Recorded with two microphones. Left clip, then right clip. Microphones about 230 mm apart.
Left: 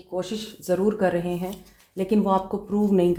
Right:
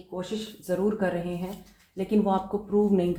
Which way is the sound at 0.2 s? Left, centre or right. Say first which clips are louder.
Left 3 dB; left.